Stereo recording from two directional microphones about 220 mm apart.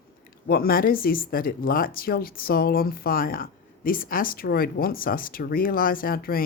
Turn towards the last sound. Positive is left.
turn(degrees=40)  # may be behind; listen again after turning